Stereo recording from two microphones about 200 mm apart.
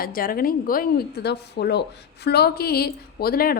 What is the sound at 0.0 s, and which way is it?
A woman's voice, 45° left (ahead or behind).